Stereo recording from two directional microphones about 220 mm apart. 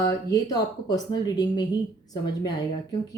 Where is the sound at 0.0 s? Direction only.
15° left (ahead or behind).